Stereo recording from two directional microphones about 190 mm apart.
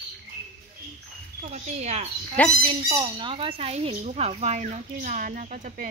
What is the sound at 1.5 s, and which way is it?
Speech, 35° right (ahead or behind).